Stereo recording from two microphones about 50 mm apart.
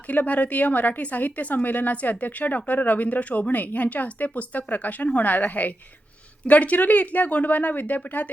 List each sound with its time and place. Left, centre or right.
0.1 s a woman's voice: left